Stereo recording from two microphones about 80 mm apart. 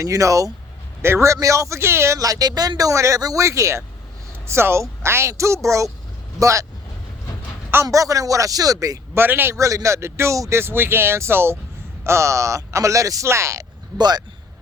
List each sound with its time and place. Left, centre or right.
0.0 s speech: right
2.1 s speech: right
7.9 s speech: right
9.1 s speech: right
9.6 s speech: right
10.6 s speech: right
14.0 s speech: right